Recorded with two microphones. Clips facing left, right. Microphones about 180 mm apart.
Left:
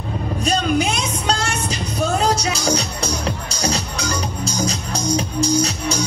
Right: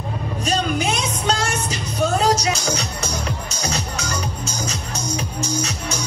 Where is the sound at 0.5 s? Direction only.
35° left (ahead or behind).